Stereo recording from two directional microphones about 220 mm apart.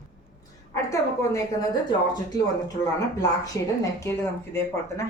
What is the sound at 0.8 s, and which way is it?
Speech, 15° left (ahead or behind).